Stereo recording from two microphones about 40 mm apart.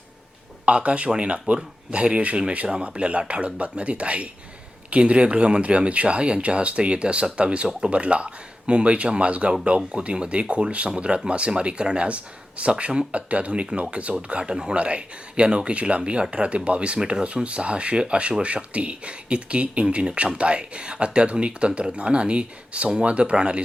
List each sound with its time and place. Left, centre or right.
0.6 s speech: right